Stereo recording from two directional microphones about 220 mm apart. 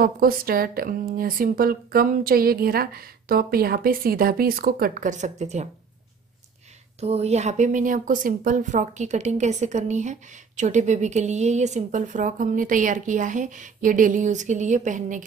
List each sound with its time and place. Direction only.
0.0 s a woman's voice: 40° right (ahead or behind)
7.0 s a woman's voice: 30° right (ahead or behind)